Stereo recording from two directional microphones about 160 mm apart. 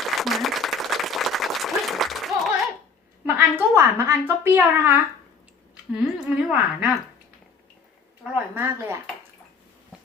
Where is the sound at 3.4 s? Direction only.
15° right (ahead or behind).